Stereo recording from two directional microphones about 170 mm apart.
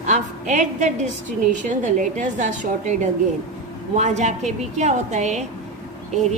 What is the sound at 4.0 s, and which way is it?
A woman's voice, 45° right (ahead or behind).